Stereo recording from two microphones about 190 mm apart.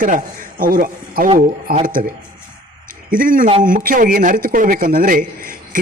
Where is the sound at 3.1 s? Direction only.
45° right (ahead or behind).